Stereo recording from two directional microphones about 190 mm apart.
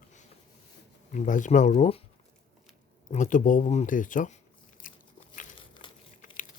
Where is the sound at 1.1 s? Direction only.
40° left (ahead or behind).